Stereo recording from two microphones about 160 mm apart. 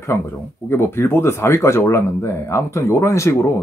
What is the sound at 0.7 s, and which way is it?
Speech, 15° left (ahead or behind).